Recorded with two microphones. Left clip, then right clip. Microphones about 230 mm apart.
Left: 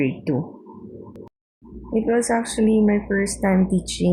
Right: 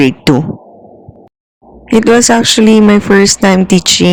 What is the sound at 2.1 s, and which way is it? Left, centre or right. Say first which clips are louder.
Speech: right 13 dB; right.